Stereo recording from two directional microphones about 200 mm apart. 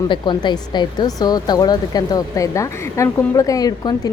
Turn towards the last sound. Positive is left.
turn(degrees=20)  # may be behind; listen again after turning